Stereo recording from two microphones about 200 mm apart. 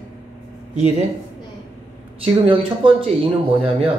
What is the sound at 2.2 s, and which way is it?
Speech, 25° right (ahead or behind).